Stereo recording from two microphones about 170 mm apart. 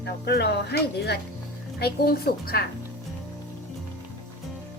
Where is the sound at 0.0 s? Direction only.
75° left (ahead or behind).